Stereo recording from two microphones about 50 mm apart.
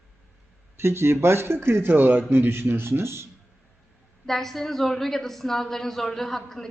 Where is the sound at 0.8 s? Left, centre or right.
Right.